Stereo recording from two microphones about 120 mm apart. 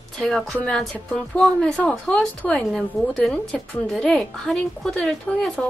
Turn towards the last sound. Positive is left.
turn(degrees=5)  # may be behind; listen again after turning